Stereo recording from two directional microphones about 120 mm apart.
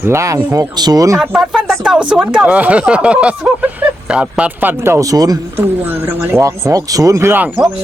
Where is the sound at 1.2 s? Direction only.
5° right (ahead or behind); by 5.4 s 30° right (ahead or behind).